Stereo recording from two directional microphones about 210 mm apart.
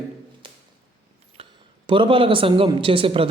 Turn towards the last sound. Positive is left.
turn(degrees=-25)  # may be behind; listen again after turning